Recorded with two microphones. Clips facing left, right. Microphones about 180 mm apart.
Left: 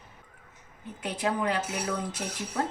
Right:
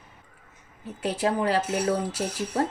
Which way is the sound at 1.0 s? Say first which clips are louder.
Right 4 dB; 35° right (ahead or behind).